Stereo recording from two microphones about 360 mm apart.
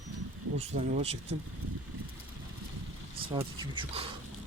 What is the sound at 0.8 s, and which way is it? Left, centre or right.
Speech, centre.